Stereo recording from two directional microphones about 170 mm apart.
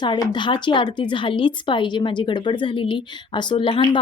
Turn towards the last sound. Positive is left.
turn(degrees=30)  # may be behind; listen again after turning